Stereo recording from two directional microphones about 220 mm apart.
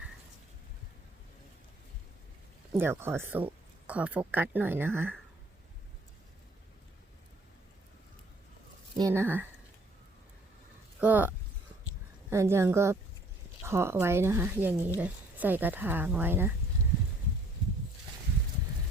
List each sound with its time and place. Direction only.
2.7 s speech: 10° right (ahead or behind)
9.0 s speech: 15° right (ahead or behind)
11.0 s speech: 10° right (ahead or behind)